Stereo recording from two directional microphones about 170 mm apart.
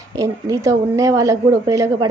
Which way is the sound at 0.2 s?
20° right (ahead or behind).